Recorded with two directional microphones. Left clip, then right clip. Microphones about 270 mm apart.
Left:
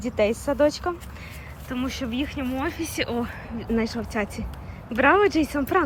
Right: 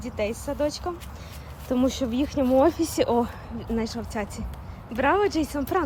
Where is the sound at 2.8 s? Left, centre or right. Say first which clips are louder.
Right 4 dB; right.